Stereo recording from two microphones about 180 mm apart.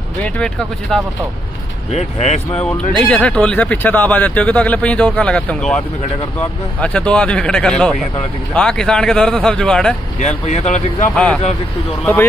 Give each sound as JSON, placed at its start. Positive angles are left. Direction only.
{"t": 0.2, "sound": "speech", "side_deg": 5}
{"t": 1.9, "sound": "speech", "side_deg": 40}
{"t": 2.5, "sound": "speech", "side_deg": 5}
{"t": 6.8, "sound": "speech", "side_deg": 5}
{"t": 10.1, "sound": "speech", "side_deg": 40}
{"t": 12.0, "sound": "speech", "side_deg": 10}